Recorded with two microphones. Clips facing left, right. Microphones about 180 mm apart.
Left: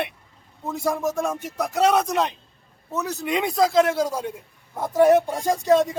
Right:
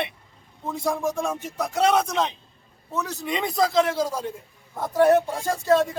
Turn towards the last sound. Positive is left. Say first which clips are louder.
# left 2 dB
turn(degrees=15)  # may be behind; listen again after turning